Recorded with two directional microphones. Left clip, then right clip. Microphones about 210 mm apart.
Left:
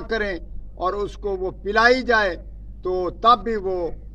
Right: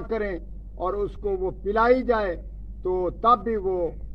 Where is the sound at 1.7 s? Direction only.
30° left (ahead or behind).